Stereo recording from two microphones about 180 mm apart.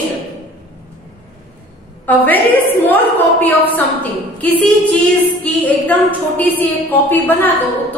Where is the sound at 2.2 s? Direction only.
10° left (ahead or behind).